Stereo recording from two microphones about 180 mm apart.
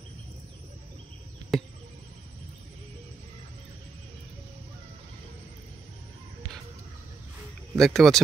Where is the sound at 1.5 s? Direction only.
Centre (ahead or behind).